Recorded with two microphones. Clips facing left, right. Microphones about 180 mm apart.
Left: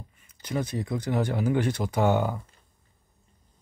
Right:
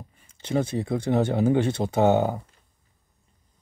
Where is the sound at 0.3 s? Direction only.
25° right (ahead or behind).